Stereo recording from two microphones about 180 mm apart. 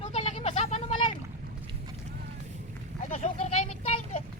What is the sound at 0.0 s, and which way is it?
Vehicle, 35° left (ahead or behind).